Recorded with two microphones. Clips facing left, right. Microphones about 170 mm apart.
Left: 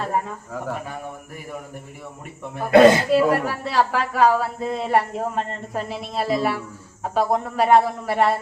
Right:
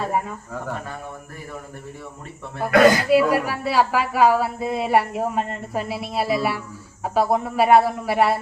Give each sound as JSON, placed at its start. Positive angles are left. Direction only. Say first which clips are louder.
{"t": 0.5, "sound": "speech", "louder": "left 1 dB", "side_deg": 5}
{"t": 2.6, "sound": "speech", "louder": "left 3 dB", "side_deg": 25}
{"t": 3.1, "sound": "speech", "louder": "right 1 dB", "side_deg": -10}